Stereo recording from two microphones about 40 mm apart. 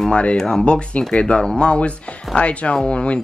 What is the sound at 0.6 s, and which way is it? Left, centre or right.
Speech, left.